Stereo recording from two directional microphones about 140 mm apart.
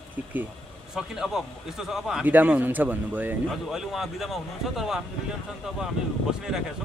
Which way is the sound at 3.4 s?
Centre (ahead or behind).